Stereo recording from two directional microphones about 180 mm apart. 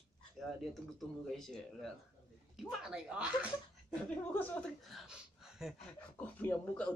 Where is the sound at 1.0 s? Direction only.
Centre (ahead or behind).